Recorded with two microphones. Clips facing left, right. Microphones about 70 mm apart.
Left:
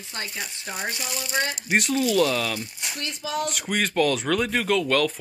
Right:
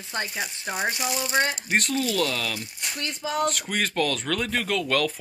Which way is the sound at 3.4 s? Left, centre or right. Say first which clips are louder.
Even; centre.